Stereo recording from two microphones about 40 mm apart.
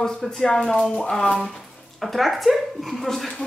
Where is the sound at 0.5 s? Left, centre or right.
Left.